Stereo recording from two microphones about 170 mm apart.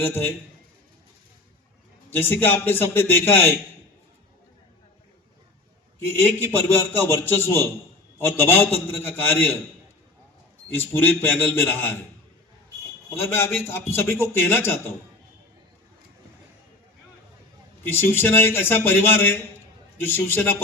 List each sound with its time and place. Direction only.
0.0 s a man's voice: 10° left (ahead or behind)
2.1 s a man's voice: 10° left (ahead or behind)
6.2 s a man's voice: 10° left (ahead or behind)
10.8 s a man's voice: 10° left (ahead or behind)
13.3 s a man's voice: 15° left (ahead or behind)
17.8 s a man's voice: 15° left (ahead or behind)